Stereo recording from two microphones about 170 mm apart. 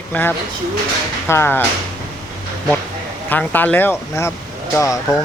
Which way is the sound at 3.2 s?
10° left (ahead or behind).